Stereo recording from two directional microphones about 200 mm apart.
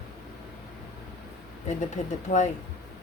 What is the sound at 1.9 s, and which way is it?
Speech, 35° left (ahead or behind).